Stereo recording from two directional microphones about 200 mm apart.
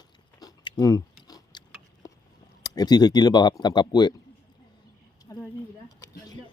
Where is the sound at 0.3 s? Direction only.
20° left (ahead or behind).